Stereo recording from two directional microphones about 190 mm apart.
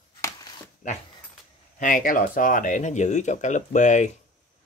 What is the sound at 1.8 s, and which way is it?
Speech, 45° left (ahead or behind).